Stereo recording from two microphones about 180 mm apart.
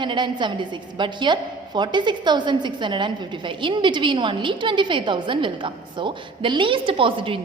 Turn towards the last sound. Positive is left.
turn(degrees=-30)  # may be behind; listen again after turning